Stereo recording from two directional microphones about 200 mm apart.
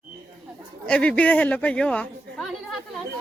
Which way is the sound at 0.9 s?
5° left (ahead or behind).